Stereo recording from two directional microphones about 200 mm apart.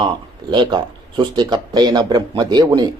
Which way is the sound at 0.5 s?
25° right (ahead or behind).